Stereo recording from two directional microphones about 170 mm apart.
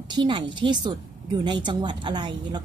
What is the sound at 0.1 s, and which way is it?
A woman's voice, 30° right (ahead or behind).